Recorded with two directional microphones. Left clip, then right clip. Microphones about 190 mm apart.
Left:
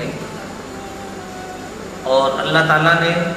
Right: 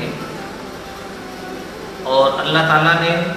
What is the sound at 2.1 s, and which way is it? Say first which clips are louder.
A man's voice: right 1 dB; 25° left (ahead or behind).